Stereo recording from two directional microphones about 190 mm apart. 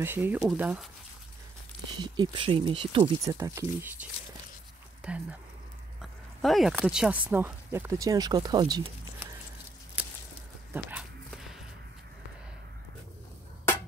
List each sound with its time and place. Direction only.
0.0 s speech: 10° right (ahead or behind)
2.0 s speech: 25° right (ahead or behind); by 5.4 s 5° right (ahead or behind)
6.4 s speech: centre (ahead or behind); by 9.3 s 20° right (ahead or behind)
10.7 s dog: 5° right (ahead or behind)